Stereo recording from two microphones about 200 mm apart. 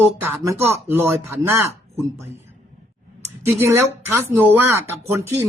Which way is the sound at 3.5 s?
10° right (ahead or behind).